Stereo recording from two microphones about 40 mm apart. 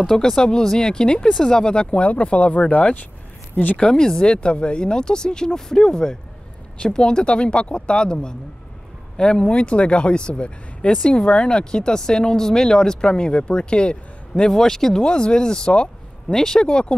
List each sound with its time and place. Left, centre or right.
0.2 s speech: centre; by 3.0 s left
3.8 s speech: centre
14.5 s speech: centre; by 16.3 s left
16.3 s speech: centre
16.6 s speech: left